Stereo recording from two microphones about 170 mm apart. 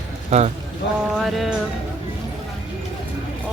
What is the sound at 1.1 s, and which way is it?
Speech, centre (ahead or behind).